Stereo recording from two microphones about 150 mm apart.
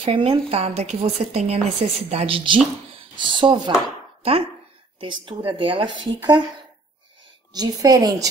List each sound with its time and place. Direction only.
0.0 s a woman's voice: 40° right (ahead or behind)
7.5 s a woman's voice: 25° right (ahead or behind)